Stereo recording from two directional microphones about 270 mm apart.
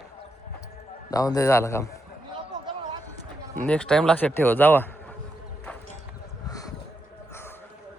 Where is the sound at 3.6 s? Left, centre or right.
Centre.